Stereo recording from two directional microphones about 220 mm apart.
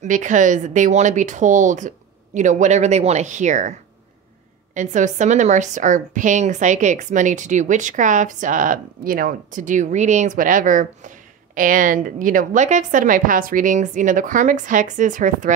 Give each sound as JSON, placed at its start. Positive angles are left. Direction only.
{"t": 0.0, "sound": "a woman's voice", "side_deg": -35}
{"t": 4.7, "sound": "a woman's voice", "side_deg": -35}